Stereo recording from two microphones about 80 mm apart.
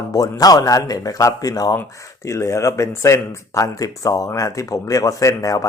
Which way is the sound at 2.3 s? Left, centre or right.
Left.